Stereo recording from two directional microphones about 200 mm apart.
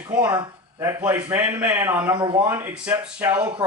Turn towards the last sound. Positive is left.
turn(degrees=-5)  # may be behind; listen again after turning